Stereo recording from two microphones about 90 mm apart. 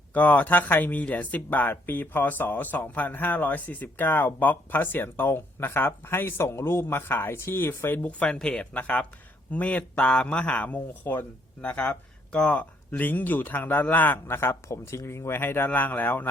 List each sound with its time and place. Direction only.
0.1 s a man's voice: 20° left (ahead or behind)